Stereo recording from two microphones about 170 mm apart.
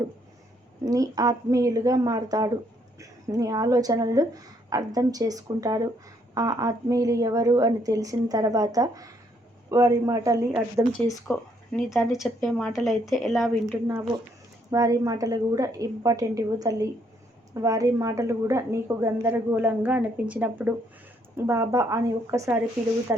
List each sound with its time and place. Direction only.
0.9 s a woman's voice: 20° right (ahead or behind)
11.8 s a woman's voice: centre (ahead or behind)
14.7 s a woman's voice: 20° right (ahead or behind)